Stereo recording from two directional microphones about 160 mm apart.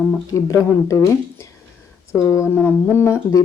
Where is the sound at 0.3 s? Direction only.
20° left (ahead or behind).